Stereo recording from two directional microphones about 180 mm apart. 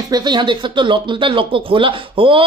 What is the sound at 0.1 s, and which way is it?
Speech, 25° right (ahead or behind).